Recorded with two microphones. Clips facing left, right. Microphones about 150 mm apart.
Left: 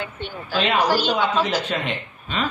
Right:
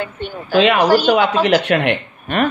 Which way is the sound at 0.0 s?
50° right (ahead or behind).